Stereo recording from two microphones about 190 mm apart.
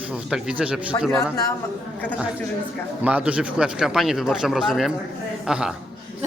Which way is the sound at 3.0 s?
5° right (ahead or behind).